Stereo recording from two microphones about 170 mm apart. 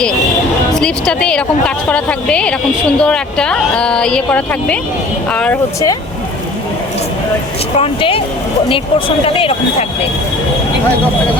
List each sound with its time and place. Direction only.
0.8 s a woman's voice: 5° left (ahead or behind)
7.8 s speech: 35° left (ahead or behind)